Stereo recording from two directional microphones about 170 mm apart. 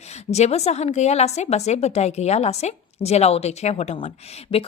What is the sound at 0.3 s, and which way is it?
A woman's voice, 40° left (ahead or behind).